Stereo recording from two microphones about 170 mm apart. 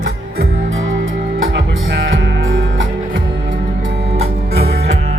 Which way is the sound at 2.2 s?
90° right.